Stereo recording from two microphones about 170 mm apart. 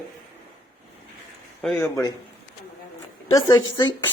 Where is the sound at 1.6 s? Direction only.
5° left (ahead or behind).